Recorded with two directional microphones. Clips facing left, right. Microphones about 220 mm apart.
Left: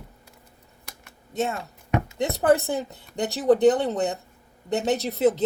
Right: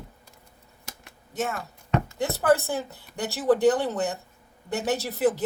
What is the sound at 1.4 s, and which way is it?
Speech, 15° left (ahead or behind).